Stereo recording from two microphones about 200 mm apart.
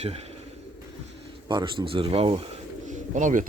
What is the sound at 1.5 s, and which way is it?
Speech, 25° right (ahead or behind).